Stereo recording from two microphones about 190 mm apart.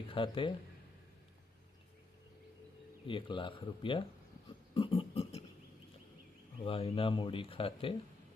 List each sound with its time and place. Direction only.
0.1 s speech: 25° left (ahead or behind)
3.1 s speech: 25° left (ahead or behind)
4.7 s a sound: 30° left (ahead or behind)
6.7 s speech: 30° left (ahead or behind)